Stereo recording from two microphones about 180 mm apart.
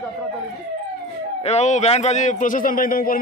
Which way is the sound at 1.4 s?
40° left (ahead or behind).